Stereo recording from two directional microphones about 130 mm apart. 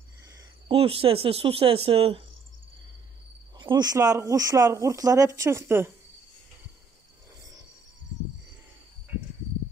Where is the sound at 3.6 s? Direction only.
35° right (ahead or behind).